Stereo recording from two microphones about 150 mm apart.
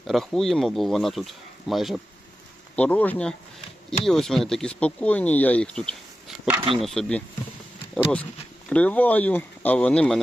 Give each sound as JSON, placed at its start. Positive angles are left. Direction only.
{"t": 0.1, "sound": "speech", "side_deg": 0}
{"t": 8.7, "sound": "speech", "side_deg": 10}